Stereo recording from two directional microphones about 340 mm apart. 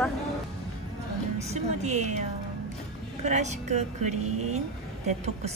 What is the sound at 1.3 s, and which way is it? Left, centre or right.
Music, centre.